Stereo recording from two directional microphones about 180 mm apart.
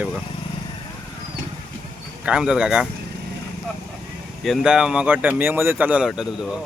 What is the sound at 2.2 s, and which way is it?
Speech, 5° right (ahead or behind).